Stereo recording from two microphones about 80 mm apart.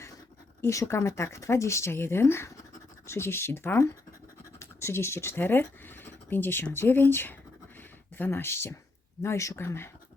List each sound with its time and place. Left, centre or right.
0.6 s speech: left